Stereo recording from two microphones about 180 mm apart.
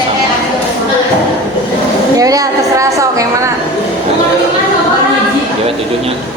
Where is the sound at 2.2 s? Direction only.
20° right (ahead or behind).